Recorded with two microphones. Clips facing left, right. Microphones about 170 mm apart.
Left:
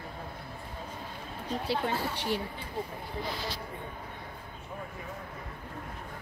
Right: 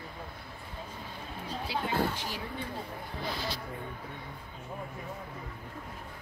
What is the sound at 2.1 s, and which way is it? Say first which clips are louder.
Speech: left 6 dB; 65° left (ahead or behind).